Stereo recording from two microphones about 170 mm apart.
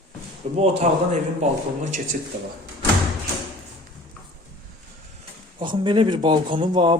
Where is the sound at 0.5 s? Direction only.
35° right (ahead or behind).